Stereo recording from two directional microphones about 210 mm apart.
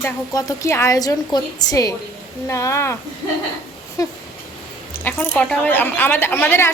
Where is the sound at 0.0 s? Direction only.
15° left (ahead or behind).